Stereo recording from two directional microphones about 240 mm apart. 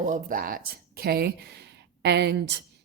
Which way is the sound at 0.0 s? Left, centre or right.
Right.